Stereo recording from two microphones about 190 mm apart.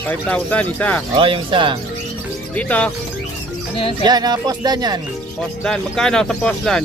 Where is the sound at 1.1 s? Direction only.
30° right (ahead or behind).